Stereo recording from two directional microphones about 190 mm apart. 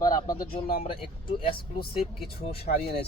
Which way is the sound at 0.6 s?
50° left (ahead or behind).